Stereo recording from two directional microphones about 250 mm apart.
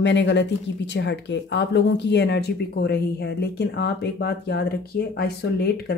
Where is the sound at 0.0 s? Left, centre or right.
Left.